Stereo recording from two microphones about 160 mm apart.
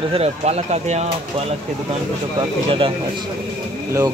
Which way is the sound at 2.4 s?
35° right (ahead or behind).